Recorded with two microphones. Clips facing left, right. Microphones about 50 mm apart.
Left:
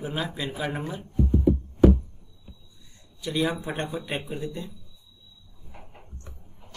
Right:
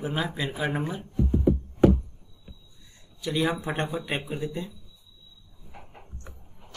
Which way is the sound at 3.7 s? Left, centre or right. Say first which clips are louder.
Right 1 dB; centre.